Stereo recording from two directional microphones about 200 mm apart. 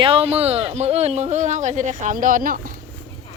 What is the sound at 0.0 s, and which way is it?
Speech, 30° right (ahead or behind).